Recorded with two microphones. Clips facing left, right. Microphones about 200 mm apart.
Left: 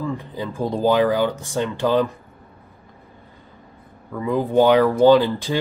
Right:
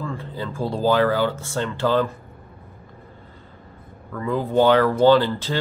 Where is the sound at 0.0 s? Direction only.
15° left (ahead or behind).